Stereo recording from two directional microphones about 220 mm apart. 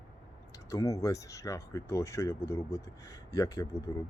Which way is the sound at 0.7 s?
15° left (ahead or behind).